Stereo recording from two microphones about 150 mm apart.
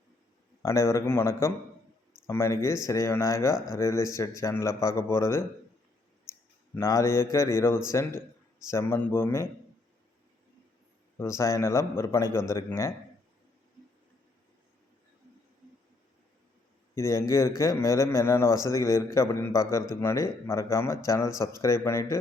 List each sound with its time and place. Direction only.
0.6 s speech: 20° left (ahead or behind)
6.7 s speech: 20° left (ahead or behind)
11.2 s speech: 20° left (ahead or behind)
16.9 s speech: 20° left (ahead or behind)